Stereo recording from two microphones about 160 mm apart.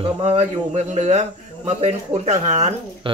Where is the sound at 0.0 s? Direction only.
40° right (ahead or behind).